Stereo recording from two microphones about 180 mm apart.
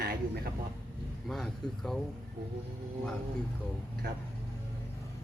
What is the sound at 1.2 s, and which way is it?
Speech, centre (ahead or behind).